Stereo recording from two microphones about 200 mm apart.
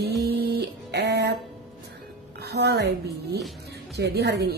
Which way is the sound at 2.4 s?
55° right (ahead or behind).